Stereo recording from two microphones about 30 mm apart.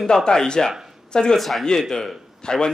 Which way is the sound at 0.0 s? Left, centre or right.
Left.